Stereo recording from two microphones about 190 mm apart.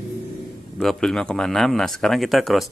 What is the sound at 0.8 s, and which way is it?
Speech, centre (ahead or behind).